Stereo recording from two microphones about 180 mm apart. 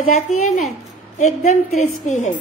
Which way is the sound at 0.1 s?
40° left (ahead or behind).